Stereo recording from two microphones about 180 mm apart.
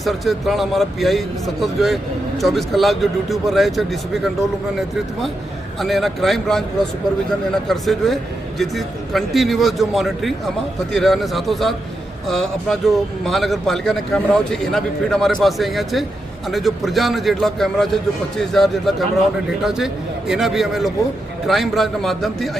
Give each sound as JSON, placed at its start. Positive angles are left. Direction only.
{"t": 0.0, "sound": "a man's voice", "side_deg": 0}
{"t": 5.8, "sound": "a man's voice", "side_deg": 0}